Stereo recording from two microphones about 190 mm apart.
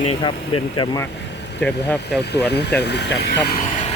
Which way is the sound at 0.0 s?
30° left (ahead or behind).